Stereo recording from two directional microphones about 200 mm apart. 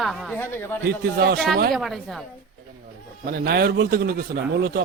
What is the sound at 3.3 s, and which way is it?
A man's voice, 50° right (ahead or behind).